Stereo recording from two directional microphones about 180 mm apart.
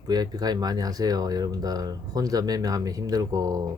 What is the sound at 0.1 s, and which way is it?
Speech, 20° right (ahead or behind).